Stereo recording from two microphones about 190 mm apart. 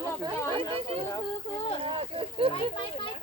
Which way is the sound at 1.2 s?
30° left (ahead or behind).